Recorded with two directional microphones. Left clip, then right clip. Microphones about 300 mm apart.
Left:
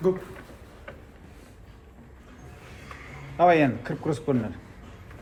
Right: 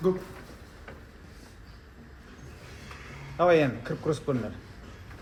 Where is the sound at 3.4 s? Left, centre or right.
Left.